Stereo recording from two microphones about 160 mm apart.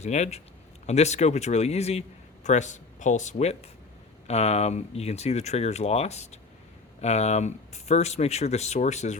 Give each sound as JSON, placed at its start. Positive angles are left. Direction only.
{"t": 0.0, "sound": "a man's voice", "side_deg": 45}